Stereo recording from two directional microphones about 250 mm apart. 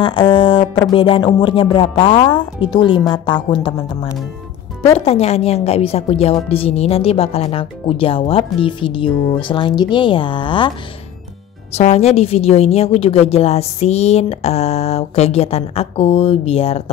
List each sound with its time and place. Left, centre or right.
0.0 s a woman's voice: centre
11.7 s a woman's voice: left